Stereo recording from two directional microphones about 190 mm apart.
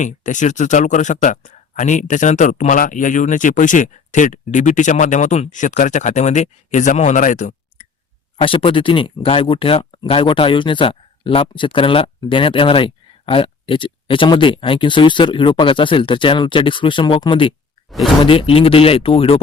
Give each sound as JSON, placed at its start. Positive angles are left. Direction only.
{"t": 0.0, "sound": "speech", "side_deg": 40}
{"t": 8.4, "sound": "speech", "side_deg": 30}